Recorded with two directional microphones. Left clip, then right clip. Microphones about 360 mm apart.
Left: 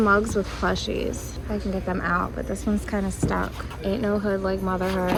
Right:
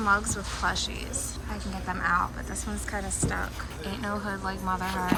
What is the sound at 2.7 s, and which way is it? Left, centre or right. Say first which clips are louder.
Speech: left 12 dB; left.